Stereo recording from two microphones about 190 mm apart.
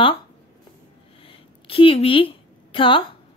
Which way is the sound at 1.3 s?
30° left (ahead or behind).